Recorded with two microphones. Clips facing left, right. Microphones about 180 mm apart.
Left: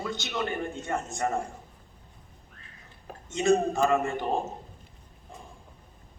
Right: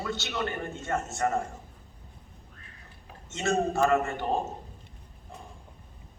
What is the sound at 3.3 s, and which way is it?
Speech, 15° left (ahead or behind).